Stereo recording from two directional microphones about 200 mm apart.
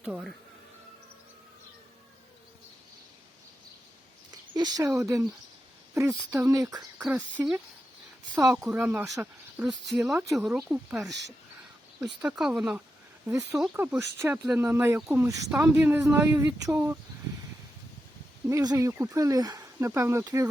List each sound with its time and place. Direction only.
0.0 s music: 5° right (ahead or behind)
4.5 s speech: 20° right (ahead or behind)
8.7 s speech: 10° right (ahead or behind)
18.4 s speech: 15° right (ahead or behind)